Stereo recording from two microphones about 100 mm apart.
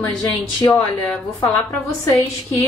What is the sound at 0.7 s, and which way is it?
Speech, 15° left (ahead or behind).